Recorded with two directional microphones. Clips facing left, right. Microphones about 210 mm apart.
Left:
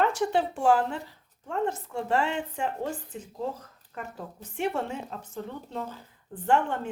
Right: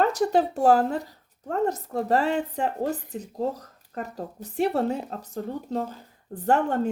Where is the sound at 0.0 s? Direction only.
40° right (ahead or behind).